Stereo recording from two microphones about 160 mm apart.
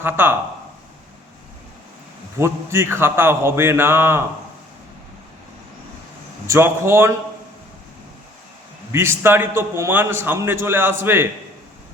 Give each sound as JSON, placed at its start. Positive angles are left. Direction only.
{"t": 0.0, "sound": "a man's voice", "side_deg": -15}
{"t": 2.4, "sound": "a man's voice", "side_deg": -15}
{"t": 6.5, "sound": "a man's voice", "side_deg": -15}
{"t": 8.9, "sound": "a man's voice", "side_deg": -15}